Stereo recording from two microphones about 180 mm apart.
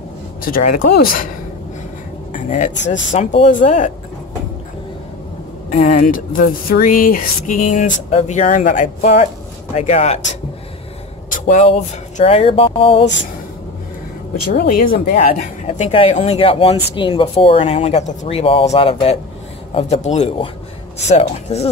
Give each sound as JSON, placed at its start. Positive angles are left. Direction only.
{"t": 0.4, "sound": "speech", "side_deg": 50}
{"t": 2.3, "sound": "speech", "side_deg": 45}
{"t": 5.8, "sound": "speech", "side_deg": 45}
{"t": 11.2, "sound": "a sound", "side_deg": 45}
{"t": 12.2, "sound": "speech", "side_deg": 35}
{"t": 14.6, "sound": "speech", "side_deg": 55}
{"t": 15.6, "sound": "speech", "side_deg": 35}